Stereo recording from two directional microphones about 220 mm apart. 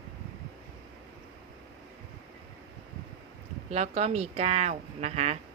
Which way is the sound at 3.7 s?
30° right (ahead or behind).